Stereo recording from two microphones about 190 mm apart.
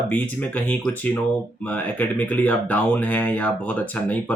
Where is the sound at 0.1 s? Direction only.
10° left (ahead or behind).